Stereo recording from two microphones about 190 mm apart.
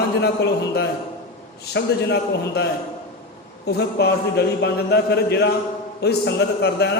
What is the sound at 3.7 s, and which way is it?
A man's voice, 60° left (ahead or behind).